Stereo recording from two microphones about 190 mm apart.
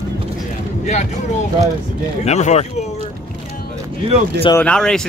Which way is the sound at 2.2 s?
35° left (ahead or behind).